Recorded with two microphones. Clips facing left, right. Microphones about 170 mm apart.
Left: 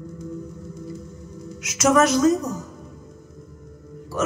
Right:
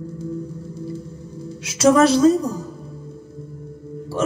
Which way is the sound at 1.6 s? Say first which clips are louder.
Right 4 dB; 30° right (ahead or behind).